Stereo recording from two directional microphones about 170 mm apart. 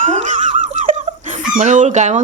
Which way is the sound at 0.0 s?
45° right (ahead or behind).